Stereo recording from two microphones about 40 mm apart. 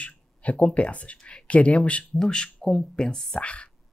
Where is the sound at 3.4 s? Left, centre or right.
Left.